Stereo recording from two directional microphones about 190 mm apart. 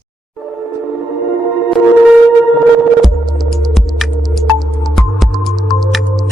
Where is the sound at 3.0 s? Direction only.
Centre (ahead or behind).